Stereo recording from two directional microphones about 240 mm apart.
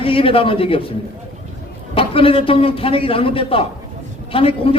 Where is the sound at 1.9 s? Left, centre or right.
Left.